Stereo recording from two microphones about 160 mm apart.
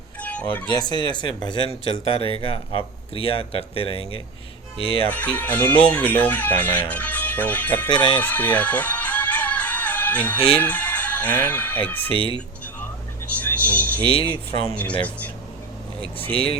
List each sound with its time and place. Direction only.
0.2 s music: 10° left (ahead or behind)
0.7 s speech: 25° left (ahead or behind)
5.0 s speech: 10° left (ahead or behind)
8.2 s music: 10° left (ahead or behind)
10.5 s speech: 10° left (ahead or behind)
13.2 s music: 10° left (ahead or behind)
14.0 s speech: 35° left (ahead or behind)
14.7 s speech: 10° left (ahead or behind)
16.3 s speech: 35° left (ahead or behind)